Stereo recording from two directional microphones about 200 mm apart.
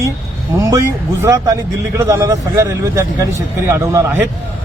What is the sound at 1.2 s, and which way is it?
A man's voice, 15° right (ahead or behind).